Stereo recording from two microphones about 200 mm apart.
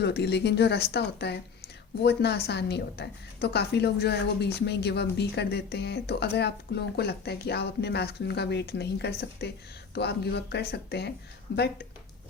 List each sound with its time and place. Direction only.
0.0 s speech: 55° left (ahead or behind)